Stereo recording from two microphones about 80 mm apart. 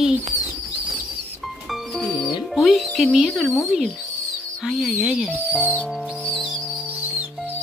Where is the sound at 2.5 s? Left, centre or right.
Centre.